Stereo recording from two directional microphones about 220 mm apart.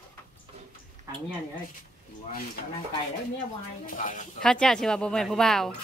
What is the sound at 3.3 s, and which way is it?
Speech, 40° left (ahead or behind).